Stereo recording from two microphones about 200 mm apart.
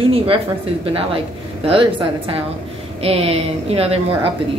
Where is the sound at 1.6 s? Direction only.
25° right (ahead or behind).